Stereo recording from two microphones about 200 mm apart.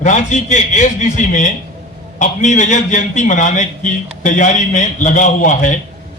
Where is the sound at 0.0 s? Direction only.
40° left (ahead or behind).